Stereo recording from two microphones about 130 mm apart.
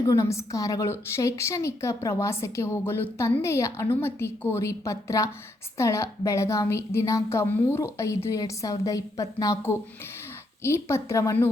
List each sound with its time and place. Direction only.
0.0 s a woman's voice: 25° left (ahead or behind)